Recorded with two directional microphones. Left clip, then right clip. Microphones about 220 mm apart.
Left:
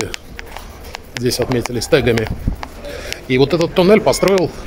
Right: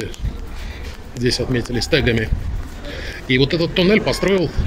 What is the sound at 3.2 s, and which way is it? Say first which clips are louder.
Speech: left 3 dB; 15° left (ahead or behind).